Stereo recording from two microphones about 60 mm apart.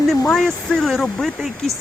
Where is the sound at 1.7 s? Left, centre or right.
Right.